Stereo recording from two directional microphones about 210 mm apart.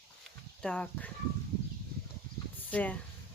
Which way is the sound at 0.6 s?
5° left (ahead or behind).